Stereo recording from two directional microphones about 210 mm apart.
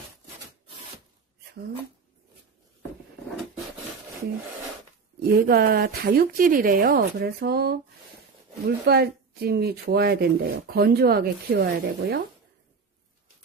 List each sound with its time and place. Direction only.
5.2 s speech: 45° right (ahead or behind)